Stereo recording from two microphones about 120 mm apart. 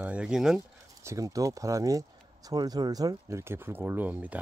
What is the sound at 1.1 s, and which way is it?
Speech, 30° right (ahead or behind).